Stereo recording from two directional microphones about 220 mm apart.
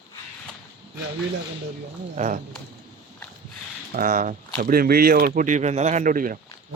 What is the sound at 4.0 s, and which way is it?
Speech, 35° right (ahead or behind).